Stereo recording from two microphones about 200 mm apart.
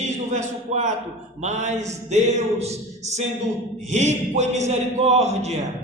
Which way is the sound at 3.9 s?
35° right (ahead or behind).